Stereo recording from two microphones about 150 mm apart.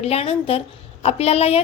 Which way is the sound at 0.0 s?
40° left (ahead or behind).